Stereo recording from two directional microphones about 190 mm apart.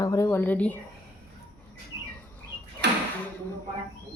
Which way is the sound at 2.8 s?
65° right (ahead or behind).